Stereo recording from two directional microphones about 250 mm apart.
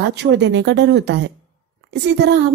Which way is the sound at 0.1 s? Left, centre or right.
Right.